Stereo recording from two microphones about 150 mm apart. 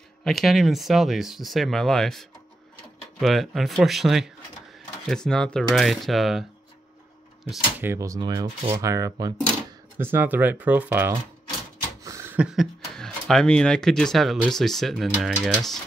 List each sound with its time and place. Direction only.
0.2 s speech: centre (ahead or behind)
7.8 s speech: 20° right (ahead or behind); by 15.5 s centre (ahead or behind)